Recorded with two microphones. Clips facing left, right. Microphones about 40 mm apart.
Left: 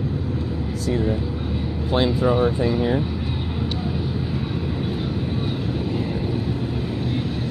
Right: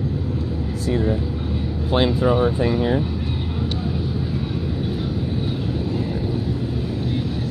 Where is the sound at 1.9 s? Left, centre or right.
Centre.